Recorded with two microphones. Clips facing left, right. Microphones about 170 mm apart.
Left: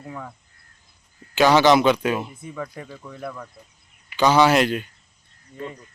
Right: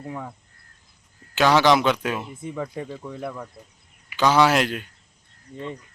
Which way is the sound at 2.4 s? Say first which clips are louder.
Right 3 dB; 25° right (ahead or behind).